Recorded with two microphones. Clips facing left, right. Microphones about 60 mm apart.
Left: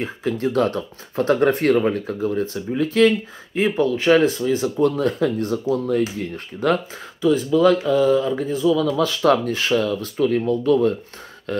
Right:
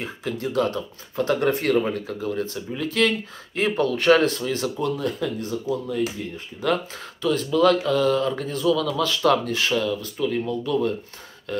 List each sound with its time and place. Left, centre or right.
0.0 s speech: left
4.8 s speech: left
7.2 s speech: centre
8.9 s speech: left